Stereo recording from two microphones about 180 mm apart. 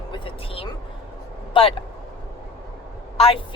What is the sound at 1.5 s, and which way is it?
Speech, 30° left (ahead or behind).